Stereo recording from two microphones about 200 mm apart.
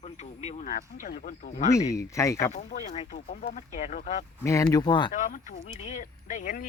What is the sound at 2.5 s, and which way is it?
Speech, 35° left (ahead or behind).